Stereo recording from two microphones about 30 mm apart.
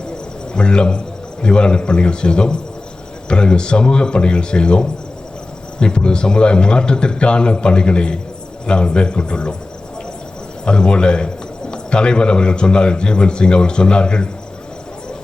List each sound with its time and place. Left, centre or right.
0.5 s a man's voice: left
10.7 s a man's voice: left